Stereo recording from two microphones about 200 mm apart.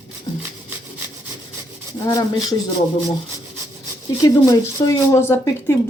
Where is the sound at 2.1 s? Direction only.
20° left (ahead or behind).